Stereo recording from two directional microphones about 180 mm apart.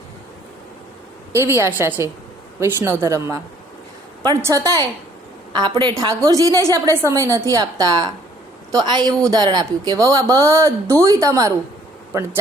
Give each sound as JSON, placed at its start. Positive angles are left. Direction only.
{"t": 1.3, "sound": "a woman's voice", "side_deg": -15}